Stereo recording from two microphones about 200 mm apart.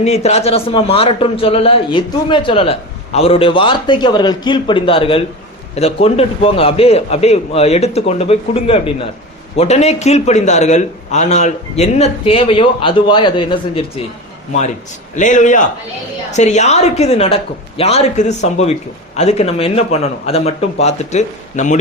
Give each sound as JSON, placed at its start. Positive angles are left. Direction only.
{"t": 0.0, "sound": "a man's voice", "side_deg": 35}
{"t": 15.1, "sound": "a man's voice", "side_deg": 40}